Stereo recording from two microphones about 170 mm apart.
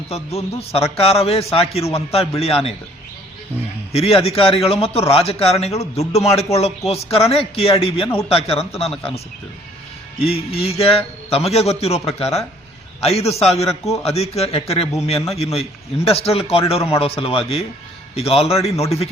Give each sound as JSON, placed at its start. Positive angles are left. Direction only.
{"t": 0.1, "sound": "a man's voice", "side_deg": 35}
{"t": 3.9, "sound": "a man's voice", "side_deg": 35}
{"t": 10.2, "sound": "a man's voice", "side_deg": 35}